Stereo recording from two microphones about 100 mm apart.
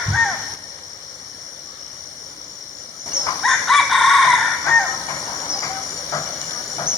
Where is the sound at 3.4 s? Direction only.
Centre (ahead or behind).